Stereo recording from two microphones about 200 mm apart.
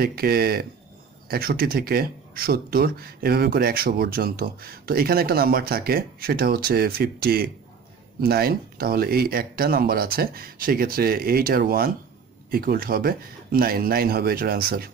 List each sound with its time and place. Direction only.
0.0 s speech: 50° right (ahead or behind)